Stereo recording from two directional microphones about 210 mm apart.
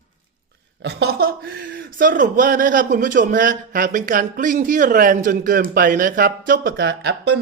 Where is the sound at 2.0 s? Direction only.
40° right (ahead or behind).